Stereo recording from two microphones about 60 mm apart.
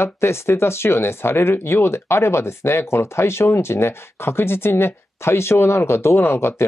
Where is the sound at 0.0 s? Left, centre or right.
Left.